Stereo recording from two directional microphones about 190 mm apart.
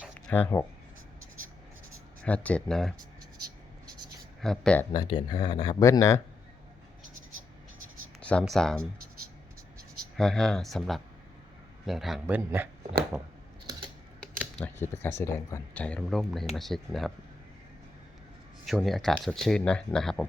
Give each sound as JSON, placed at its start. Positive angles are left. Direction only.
{"t": 0.1, "sound": "a sound", "side_deg": 10}
{"t": 2.2, "sound": "speech", "side_deg": 5}
{"t": 4.4, "sound": "speech", "side_deg": 5}
{"t": 4.9, "sound": "speech", "side_deg": 25}
{"t": 8.2, "sound": "speech", "side_deg": 5}
{"t": 10.2, "sound": "speech", "side_deg": 5}
{"t": 14.6, "sound": "speech", "side_deg": 10}
{"t": 18.6, "sound": "speech", "side_deg": 0}